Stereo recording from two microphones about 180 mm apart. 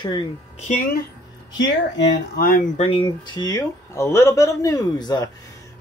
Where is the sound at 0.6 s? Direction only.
45° left (ahead or behind).